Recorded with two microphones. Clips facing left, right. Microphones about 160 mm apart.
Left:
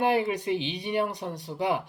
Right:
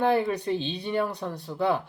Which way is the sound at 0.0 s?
15° left (ahead or behind).